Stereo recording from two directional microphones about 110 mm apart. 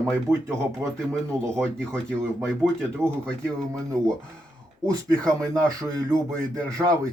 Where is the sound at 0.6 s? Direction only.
25° right (ahead or behind).